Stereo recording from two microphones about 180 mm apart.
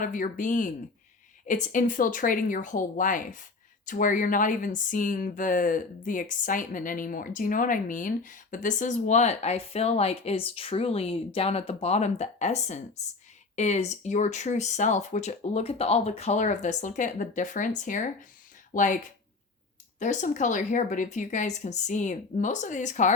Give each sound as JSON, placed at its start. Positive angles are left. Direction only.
{"t": 0.0, "sound": "speech", "side_deg": 50}
{"t": 20.0, "sound": "speech", "side_deg": 45}